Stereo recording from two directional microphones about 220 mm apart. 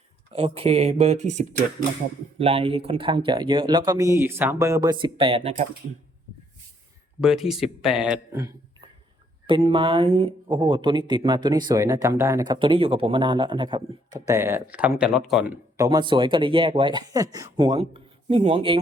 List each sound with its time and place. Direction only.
0.3 s speech: 25° right (ahead or behind)
7.2 s speech: centre (ahead or behind)
12.5 s speech: 25° right (ahead or behind); by 15.5 s centre (ahead or behind)
15.8 s speech: 20° right (ahead or behind)